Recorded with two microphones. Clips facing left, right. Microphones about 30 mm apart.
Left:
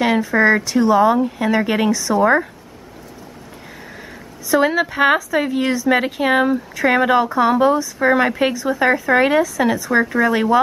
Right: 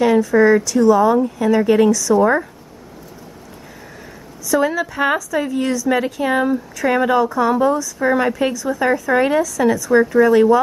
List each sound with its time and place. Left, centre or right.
0.0 s a woman's voice: left
4.5 s a woman's voice: left